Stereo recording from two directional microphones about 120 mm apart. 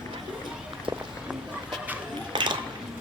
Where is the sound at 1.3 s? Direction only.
10° right (ahead or behind).